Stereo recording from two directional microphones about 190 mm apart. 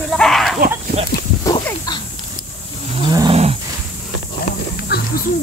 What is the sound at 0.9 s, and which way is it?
Speech, 35° right (ahead or behind).